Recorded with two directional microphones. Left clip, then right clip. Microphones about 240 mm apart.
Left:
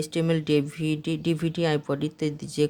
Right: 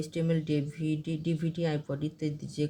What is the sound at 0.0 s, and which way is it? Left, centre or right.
Speech, left.